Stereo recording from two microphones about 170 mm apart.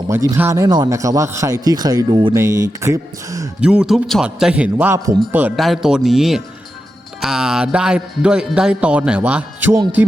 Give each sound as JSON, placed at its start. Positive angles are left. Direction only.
{"t": 0.1, "sound": "a man's voice", "side_deg": -15}
{"t": 3.6, "sound": "music", "side_deg": -5}